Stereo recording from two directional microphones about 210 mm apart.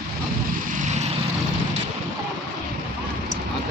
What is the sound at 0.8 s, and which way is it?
Vehicle, 35° right (ahead or behind).